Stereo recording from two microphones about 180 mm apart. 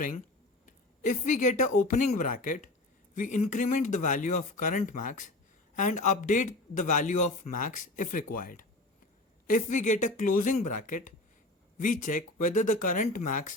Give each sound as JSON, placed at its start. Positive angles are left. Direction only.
{"t": 0.6, "sound": "a man's voice", "side_deg": 45}